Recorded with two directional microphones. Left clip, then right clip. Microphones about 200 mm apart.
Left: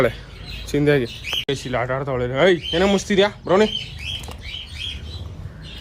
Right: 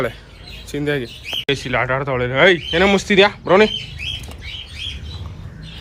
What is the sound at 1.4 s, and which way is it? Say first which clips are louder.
Speech: right 7 dB; 15° left (ahead or behind).